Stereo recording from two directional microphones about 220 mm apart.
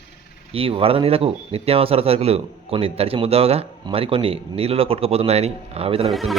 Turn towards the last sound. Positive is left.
turn(degrees=0)  # may be behind; listen again after turning